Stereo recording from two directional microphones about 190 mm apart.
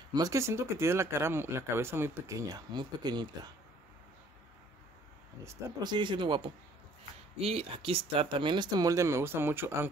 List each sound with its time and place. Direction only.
0.1 s speech: 20° right (ahead or behind)
5.4 s speech: 20° right (ahead or behind)